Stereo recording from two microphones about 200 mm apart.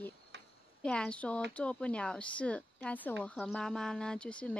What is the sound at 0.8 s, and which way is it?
A woman's voice, 5° left (ahead or behind).